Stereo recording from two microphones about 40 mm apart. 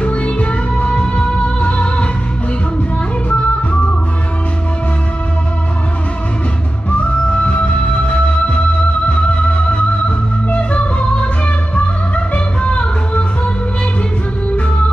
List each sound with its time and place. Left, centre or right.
0.0 s music: left
3.3 s music: left
6.9 s music: left